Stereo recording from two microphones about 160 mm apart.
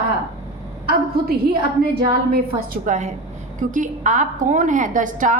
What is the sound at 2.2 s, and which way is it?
A woman's voice, 65° right (ahead or behind).